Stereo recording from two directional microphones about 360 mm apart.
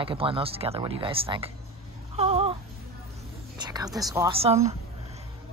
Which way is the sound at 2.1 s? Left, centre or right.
Centre.